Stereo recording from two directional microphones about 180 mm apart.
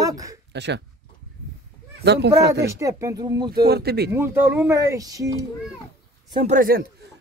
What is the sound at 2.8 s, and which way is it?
Speech, 20° right (ahead or behind).